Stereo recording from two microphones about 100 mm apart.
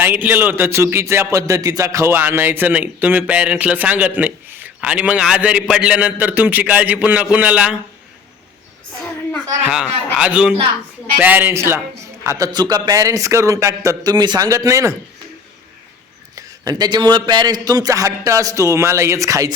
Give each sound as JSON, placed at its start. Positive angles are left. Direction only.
{"t": 0.0, "sound": "a man's voice", "side_deg": -20}
{"t": 9.6, "sound": "a man's voice", "side_deg": -10}
{"t": 16.3, "sound": "a man's voice", "side_deg": -40}